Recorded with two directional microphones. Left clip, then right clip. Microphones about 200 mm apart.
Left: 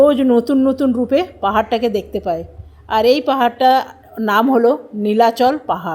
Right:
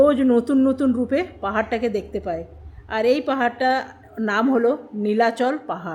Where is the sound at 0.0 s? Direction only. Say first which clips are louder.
Left 5 dB; 15° left (ahead or behind).